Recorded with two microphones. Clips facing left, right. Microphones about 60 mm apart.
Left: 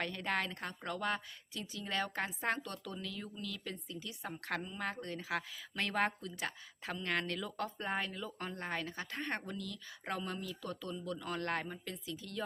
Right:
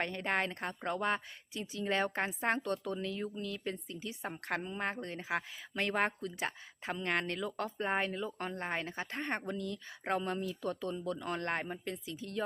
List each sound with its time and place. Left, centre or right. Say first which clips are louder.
0.0 s a woman's voice: right 3 dB; right